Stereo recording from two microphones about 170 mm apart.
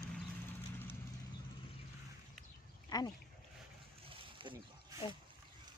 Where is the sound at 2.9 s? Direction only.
20° left (ahead or behind).